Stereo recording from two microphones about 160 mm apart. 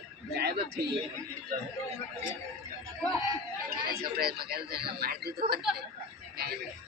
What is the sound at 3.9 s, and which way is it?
A man's voice, 85° right.